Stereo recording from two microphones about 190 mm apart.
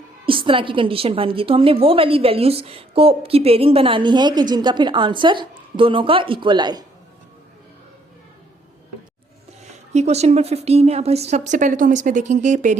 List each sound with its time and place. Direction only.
0.3 s a woman's voice: 25° right (ahead or behind)
9.9 s a woman's voice: 35° right (ahead or behind)